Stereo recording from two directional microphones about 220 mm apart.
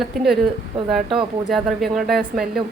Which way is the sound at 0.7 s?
25° right (ahead or behind).